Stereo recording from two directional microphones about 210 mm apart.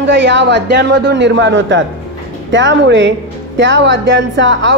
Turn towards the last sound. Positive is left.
turn(degrees=-60)  # may be behind; listen again after turning